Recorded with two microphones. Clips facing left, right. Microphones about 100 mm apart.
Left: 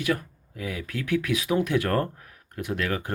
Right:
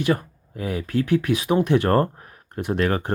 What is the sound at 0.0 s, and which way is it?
Speech, 30° right (ahead or behind).